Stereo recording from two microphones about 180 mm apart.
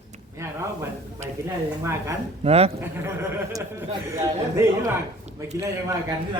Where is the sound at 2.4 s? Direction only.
35° right (ahead or behind).